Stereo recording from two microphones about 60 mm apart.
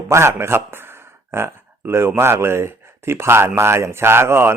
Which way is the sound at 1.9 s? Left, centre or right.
Right.